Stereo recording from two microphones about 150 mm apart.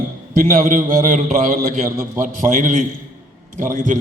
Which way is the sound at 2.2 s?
60° right (ahead or behind).